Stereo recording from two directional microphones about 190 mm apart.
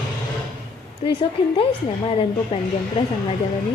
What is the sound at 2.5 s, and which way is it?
Speech, 30° left (ahead or behind).